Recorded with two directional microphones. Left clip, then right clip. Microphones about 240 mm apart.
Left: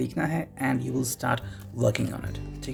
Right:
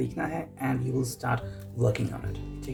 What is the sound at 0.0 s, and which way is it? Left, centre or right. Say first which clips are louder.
Speech: left 2 dB; left.